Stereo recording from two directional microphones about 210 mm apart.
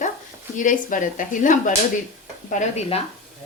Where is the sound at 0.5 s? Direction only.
40° left (ahead or behind).